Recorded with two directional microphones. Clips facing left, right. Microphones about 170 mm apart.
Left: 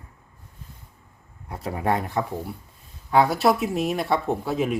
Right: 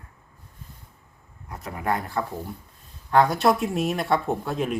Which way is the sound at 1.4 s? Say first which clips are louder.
Left 3 dB; 30° left (ahead or behind).